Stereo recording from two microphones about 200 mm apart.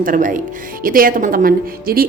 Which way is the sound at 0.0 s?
45° right (ahead or behind).